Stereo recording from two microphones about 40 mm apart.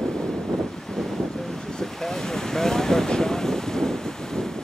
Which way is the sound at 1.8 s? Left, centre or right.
Centre.